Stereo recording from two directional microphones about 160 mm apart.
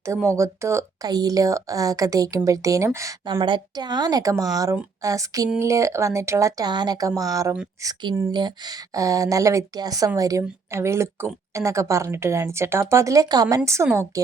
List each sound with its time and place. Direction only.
0.0 s speech: 15° right (ahead or behind)